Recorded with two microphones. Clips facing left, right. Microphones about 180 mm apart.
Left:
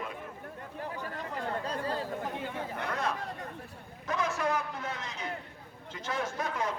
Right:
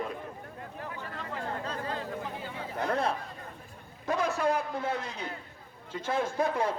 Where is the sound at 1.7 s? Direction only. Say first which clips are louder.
Left 1 dB; 35° left (ahead or behind).